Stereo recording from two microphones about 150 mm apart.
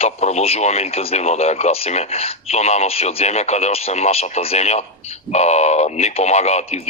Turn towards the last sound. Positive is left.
turn(degrees=45)  # may be behind; listen again after turning